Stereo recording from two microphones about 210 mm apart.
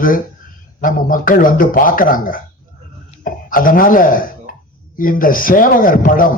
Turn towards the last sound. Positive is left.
turn(degrees=40)  # may be behind; listen again after turning